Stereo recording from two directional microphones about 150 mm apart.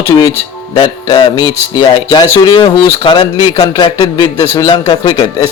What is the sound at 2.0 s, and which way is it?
Speech, 25° left (ahead or behind).